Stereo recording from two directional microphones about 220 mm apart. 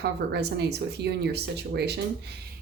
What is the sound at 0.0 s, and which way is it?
Speech, 50° right (ahead or behind).